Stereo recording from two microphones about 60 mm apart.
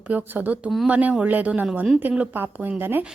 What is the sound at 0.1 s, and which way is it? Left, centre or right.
A woman's voice, right.